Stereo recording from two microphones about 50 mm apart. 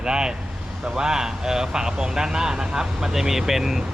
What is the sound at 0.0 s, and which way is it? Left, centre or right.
Speech, centre.